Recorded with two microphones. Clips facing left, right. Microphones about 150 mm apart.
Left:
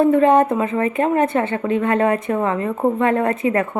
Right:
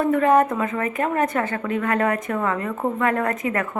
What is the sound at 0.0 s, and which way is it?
A woman's voice, 25° left (ahead or behind).